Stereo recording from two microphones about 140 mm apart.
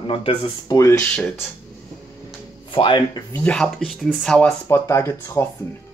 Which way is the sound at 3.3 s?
5° left (ahead or behind).